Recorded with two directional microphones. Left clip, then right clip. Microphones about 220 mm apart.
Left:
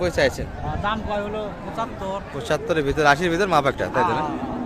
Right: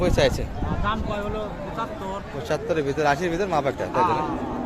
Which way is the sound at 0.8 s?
50° left (ahead or behind).